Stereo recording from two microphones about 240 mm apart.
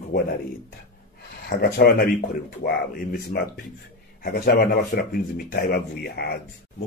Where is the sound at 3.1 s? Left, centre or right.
Left.